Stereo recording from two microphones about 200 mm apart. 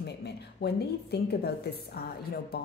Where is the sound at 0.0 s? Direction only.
55° left (ahead or behind).